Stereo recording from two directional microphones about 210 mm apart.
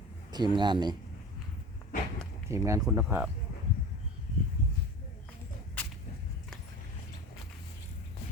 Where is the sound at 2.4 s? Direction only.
15° right (ahead or behind).